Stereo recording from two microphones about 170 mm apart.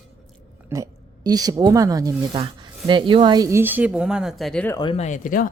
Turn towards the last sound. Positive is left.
turn(degrees=55)  # may be behind; listen again after turning